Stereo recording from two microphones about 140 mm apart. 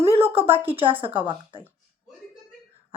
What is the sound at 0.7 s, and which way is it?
Speech, 40° right (ahead or behind).